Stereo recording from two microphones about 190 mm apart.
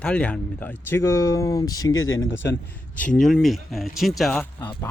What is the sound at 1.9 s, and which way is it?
Speech, 90° left.